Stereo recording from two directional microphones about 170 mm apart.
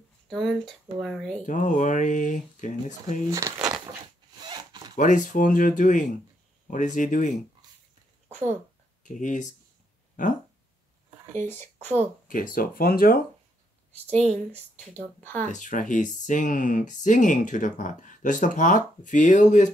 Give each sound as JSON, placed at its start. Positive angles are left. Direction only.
{"t": 0.3, "sound": "speech", "side_deg": 0}
{"t": 1.4, "sound": "speech", "side_deg": 50}
{"t": 3.3, "sound": "speech", "side_deg": -20}
{"t": 4.9, "sound": "speech", "side_deg": 50}
{"t": 9.0, "sound": "speech", "side_deg": 45}
{"t": 11.4, "sound": "speech", "side_deg": 10}
{"t": 12.3, "sound": "speech", "side_deg": 55}
{"t": 13.9, "sound": "speech", "side_deg": -40}
{"t": 15.1, "sound": "speech", "side_deg": 10}
{"t": 15.4, "sound": "speech", "side_deg": 45}